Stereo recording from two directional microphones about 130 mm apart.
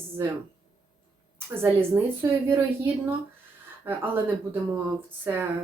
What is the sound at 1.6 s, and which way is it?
Speech, 15° right (ahead or behind).